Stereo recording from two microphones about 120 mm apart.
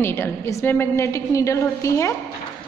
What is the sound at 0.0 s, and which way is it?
A woman's voice, 20° left (ahead or behind).